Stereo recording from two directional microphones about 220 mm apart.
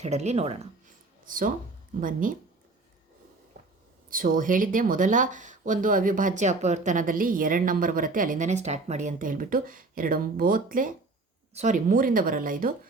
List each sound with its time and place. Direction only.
0.0 s speech: 30° right (ahead or behind)
4.1 s speech: 40° right (ahead or behind)